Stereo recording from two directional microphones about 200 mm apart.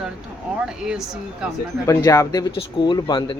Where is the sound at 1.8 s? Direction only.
15° left (ahead or behind).